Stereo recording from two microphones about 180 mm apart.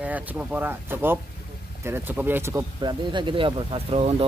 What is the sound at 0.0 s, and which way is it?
Speech, 5° right (ahead or behind).